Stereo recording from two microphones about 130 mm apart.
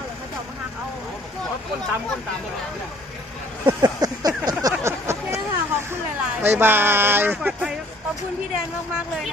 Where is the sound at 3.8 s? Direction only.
30° right (ahead or behind).